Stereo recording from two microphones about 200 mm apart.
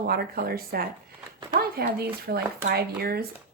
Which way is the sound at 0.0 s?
50° right (ahead or behind).